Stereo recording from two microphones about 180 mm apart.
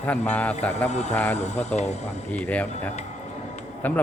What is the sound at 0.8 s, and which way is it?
Speech, 40° left (ahead or behind).